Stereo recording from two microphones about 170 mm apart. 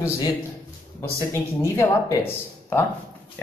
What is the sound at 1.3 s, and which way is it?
A man's voice, 15° left (ahead or behind).